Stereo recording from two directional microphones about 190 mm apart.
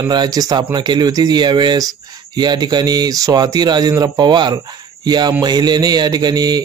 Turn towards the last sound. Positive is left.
turn(degrees=-20)  # may be behind; listen again after turning